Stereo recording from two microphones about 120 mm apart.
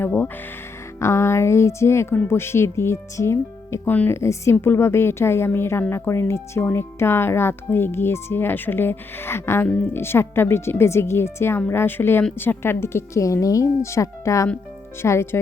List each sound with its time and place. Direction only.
0.0 s a woman's voice: 15° left (ahead or behind)